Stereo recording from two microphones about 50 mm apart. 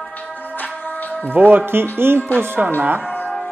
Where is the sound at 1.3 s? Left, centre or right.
Right.